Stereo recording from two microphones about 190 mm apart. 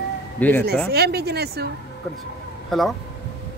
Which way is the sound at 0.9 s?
55° right (ahead or behind).